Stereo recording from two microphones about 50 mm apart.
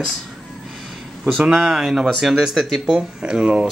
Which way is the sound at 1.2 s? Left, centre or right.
Centre.